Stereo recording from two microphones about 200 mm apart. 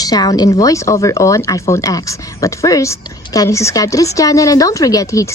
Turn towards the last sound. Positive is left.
turn(degrees=15)  # may be behind; listen again after turning